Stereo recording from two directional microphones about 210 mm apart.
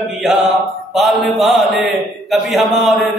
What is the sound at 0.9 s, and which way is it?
Mantra, centre (ahead or behind).